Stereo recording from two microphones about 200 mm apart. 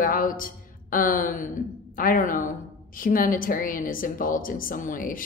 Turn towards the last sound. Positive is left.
turn(degrees=45)  # may be behind; listen again after turning